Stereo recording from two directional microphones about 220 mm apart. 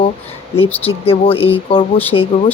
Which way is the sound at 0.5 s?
25° left (ahead or behind).